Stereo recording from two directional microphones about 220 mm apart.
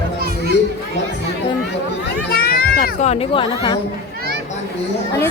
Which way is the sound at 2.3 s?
45° left (ahead or behind).